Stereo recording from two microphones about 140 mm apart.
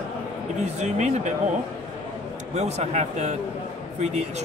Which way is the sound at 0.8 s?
55° right (ahead or behind).